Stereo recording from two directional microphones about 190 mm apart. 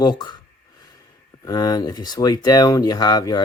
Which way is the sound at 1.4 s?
20° left (ahead or behind).